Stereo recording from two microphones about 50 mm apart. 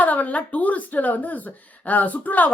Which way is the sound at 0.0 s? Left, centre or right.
Left.